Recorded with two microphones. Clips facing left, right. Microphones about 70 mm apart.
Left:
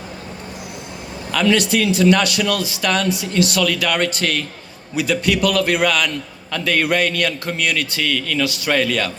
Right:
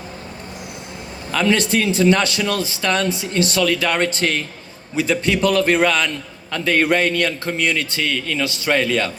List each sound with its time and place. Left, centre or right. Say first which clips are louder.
1.3 s a man's voice: left 1 dB; right